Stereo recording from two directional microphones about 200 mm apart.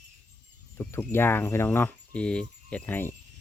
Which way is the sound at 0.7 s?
10° left (ahead or behind).